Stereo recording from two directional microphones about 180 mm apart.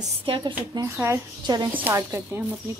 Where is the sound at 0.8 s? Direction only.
15° right (ahead or behind).